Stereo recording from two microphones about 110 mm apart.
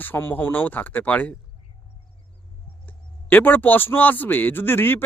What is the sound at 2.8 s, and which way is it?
A man's voice, 15° left (ahead or behind).